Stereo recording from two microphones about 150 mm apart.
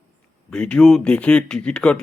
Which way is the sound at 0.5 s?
5° left (ahead or behind).